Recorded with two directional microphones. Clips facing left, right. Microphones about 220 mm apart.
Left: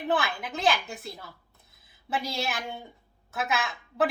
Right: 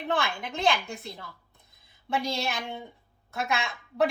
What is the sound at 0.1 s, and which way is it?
Speech, 5° left (ahead or behind).